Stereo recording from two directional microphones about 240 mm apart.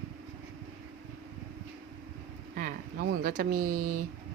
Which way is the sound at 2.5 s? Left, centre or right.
Right.